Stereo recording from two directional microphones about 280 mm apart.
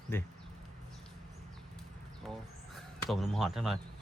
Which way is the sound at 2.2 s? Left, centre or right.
Centre.